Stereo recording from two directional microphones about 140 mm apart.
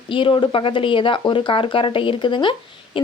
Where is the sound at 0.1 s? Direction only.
40° left (ahead or behind).